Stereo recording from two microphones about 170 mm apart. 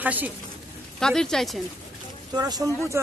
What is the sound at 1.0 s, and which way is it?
Speech, 5° left (ahead or behind).